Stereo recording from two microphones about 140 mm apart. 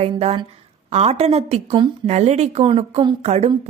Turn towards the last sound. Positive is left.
turn(degrees=-50)  # may be behind; listen again after turning